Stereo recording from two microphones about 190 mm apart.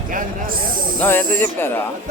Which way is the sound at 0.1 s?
45° right (ahead or behind).